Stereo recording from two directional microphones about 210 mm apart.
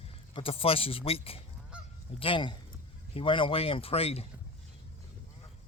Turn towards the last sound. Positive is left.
turn(degrees=30)  # may be behind; listen again after turning